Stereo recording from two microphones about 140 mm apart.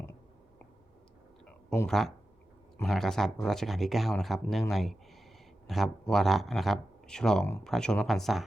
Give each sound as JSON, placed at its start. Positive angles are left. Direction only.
{"t": 1.9, "sound": "speech", "side_deg": 0}